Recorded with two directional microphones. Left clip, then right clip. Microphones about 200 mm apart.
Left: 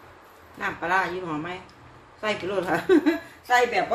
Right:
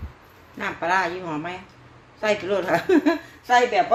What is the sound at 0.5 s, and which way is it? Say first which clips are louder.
A woman's voice: right 2 dB; 45° right (ahead or behind).